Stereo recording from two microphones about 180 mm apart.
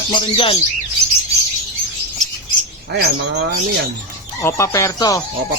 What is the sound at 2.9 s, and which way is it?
Speech, 65° right (ahead or behind).